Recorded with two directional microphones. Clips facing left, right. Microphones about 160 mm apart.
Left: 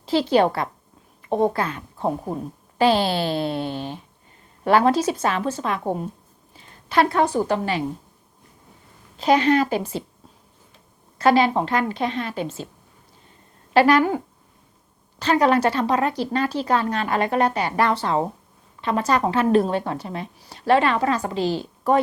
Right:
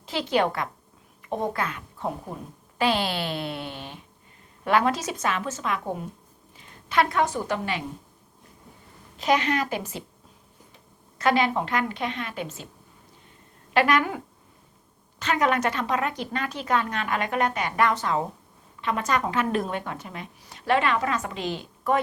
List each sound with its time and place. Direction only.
0.0 s a woman's voice: 35° left (ahead or behind)
9.1 s a woman's voice: 30° left (ahead or behind)
11.2 s a woman's voice: 35° left (ahead or behind)
13.7 s a woman's voice: 35° left (ahead or behind)
15.2 s a woman's voice: 35° left (ahead or behind)